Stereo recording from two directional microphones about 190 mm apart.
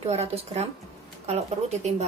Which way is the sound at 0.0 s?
35° right (ahead or behind).